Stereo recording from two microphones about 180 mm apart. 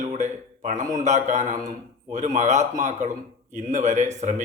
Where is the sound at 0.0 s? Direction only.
40° right (ahead or behind).